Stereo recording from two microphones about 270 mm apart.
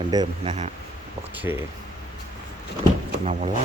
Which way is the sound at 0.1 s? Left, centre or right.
Centre.